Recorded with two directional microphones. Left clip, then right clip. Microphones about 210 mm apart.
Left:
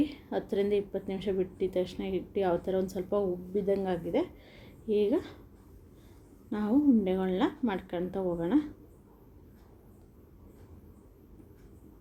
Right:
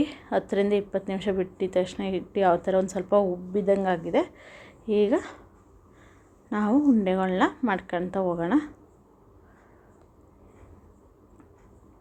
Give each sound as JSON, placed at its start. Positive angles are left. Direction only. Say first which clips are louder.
{"t": 0.0, "sound": "a woman's voice", "louder": "right 6 dB", "side_deg": -20}
{"t": 6.5, "sound": "a woman's voice", "louder": "right 4 dB", "side_deg": -20}